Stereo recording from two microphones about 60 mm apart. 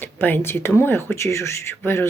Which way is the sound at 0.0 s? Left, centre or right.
Left.